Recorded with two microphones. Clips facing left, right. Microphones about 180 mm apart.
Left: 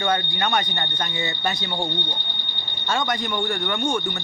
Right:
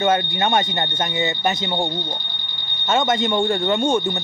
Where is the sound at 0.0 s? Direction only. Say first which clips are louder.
Right 5 dB; 25° right (ahead or behind).